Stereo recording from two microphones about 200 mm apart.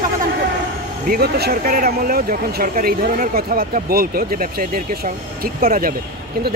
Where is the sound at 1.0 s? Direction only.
50° right (ahead or behind).